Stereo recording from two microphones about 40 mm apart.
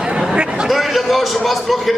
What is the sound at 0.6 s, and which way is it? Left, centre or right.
A man's voice, centre.